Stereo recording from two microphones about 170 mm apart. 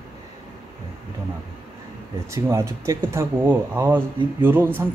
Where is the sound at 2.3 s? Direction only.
15° right (ahead or behind).